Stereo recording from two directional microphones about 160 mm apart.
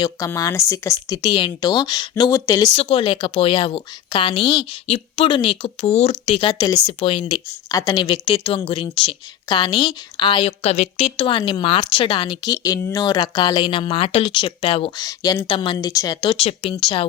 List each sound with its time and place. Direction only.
0.3 s speech: 20° left (ahead or behind)
2.7 s a woman's voice: 35° left (ahead or behind)
6.5 s a woman's voice: 25° left (ahead or behind)